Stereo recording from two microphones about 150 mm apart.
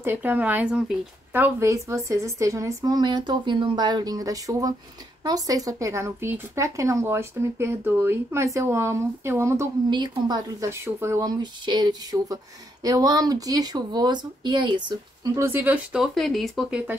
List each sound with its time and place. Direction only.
0.0 s speech: 15° right (ahead or behind)
9.8 s speech: 30° right (ahead or behind)
15.3 s speech: 15° right (ahead or behind); by 16.8 s centre (ahead or behind)